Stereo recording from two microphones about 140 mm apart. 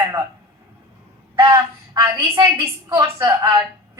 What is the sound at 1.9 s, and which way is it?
A woman's voice, 20° right (ahead or behind).